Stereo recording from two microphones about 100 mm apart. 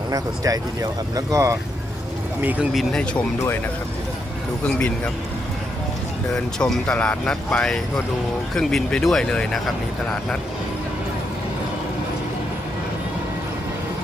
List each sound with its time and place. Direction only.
0.1 s speech: 35° right (ahead or behind)
2.4 s speech: 15° right (ahead or behind)
2.7 s speech: 5° left (ahead or behind)
6.3 s speech: 5° left (ahead or behind)